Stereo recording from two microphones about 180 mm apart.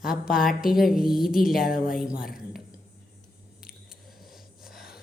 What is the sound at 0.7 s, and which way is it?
Speech, centre (ahead or behind).